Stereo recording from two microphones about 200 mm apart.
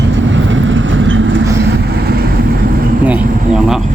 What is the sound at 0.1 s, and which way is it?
Vehicle, 70° right (ahead or behind).